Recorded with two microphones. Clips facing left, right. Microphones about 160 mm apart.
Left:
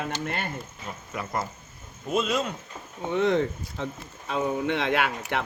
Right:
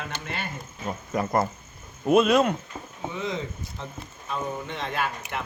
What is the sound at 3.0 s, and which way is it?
Speech, 70° left (ahead or behind).